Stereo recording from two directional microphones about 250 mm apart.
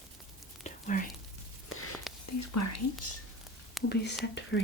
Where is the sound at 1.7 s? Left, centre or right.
Left.